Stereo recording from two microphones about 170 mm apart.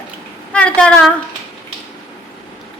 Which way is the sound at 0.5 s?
5° left (ahead or behind).